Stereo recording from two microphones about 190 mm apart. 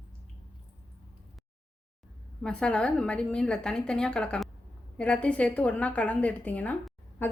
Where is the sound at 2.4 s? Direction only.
5° left (ahead or behind).